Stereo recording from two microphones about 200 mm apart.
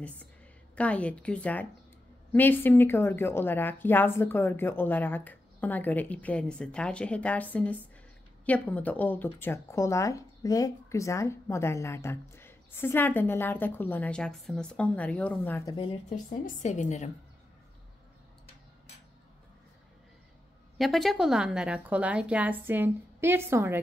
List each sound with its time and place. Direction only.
0.7 s speech: 5° left (ahead or behind)
16.3 s a woman's voice: 40° left (ahead or behind)
20.7 s a woman's voice: centre (ahead or behind)